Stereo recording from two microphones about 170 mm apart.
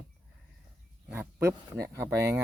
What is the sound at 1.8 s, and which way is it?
Speech, 15° right (ahead or behind).